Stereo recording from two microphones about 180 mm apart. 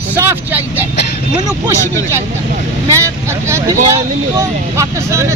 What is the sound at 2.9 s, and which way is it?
Speech, 15° right (ahead or behind).